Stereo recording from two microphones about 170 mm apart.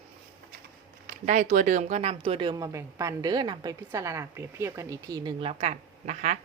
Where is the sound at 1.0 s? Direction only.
50° right (ahead or behind).